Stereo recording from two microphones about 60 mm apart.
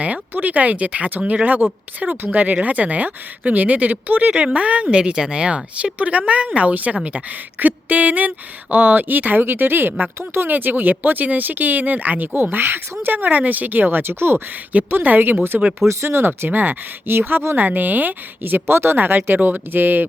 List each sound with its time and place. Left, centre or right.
0.0 s speech: right
4.3 s speech: centre; by 13.1 s right
13.1 s speech: right
15.9 s speech: right